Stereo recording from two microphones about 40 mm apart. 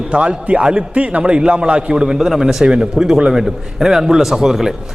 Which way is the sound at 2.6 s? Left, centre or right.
Right.